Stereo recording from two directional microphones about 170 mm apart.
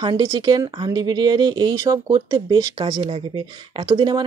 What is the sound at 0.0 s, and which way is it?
Speech, 25° right (ahead or behind).